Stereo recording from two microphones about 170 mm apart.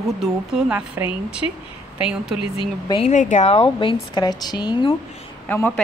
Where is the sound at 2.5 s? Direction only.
35° left (ahead or behind).